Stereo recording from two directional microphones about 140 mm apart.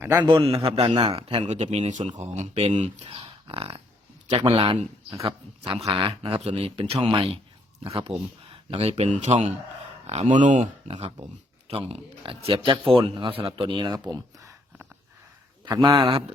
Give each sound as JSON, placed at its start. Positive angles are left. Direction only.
{"t": 0.0, "sound": "a man's voice", "side_deg": -15}
{"t": 0.3, "sound": "a man's voice", "side_deg": -40}
{"t": 3.0, "sound": "a man's voice", "side_deg": -40}
{"t": 10.8, "sound": "speech", "side_deg": -40}
{"t": 15.6, "sound": "speech", "side_deg": -35}